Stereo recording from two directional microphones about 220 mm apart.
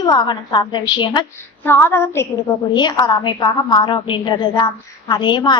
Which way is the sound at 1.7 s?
10° left (ahead or behind).